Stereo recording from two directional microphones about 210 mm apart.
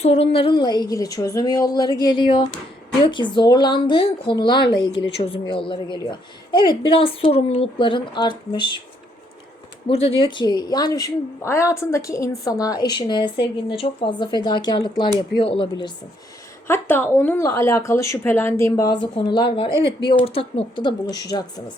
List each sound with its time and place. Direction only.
0.0 s speech: 30° left (ahead or behind)
9.8 s speech: 25° left (ahead or behind)
16.6 s speech: 10° left (ahead or behind)